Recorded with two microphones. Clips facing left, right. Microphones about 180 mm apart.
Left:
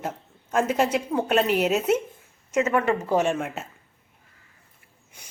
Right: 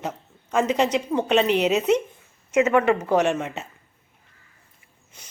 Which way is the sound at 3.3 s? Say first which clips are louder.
Right 1 dB; 5° left (ahead or behind).